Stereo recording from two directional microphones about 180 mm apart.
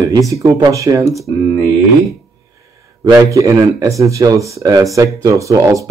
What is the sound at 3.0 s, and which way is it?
Speech, 15° right (ahead or behind).